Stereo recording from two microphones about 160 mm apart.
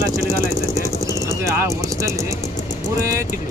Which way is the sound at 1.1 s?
20° right (ahead or behind).